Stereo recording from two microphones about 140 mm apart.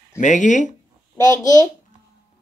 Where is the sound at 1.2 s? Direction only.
25° left (ahead or behind).